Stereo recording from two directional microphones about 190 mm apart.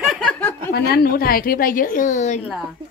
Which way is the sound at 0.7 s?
55° left (ahead or behind).